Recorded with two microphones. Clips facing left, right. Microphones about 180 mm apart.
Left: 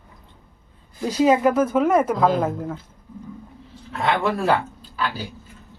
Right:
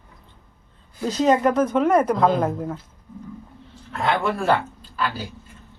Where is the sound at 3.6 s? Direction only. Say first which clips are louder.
Even; centre (ahead or behind).